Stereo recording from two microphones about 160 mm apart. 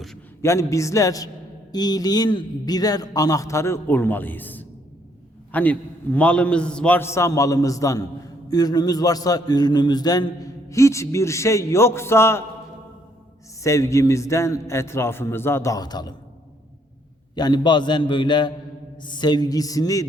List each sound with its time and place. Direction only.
0.4 s a man's voice: 20° left (ahead or behind)
13.6 s a man's voice: 20° left (ahead or behind)
17.3 s a man's voice: 25° left (ahead or behind)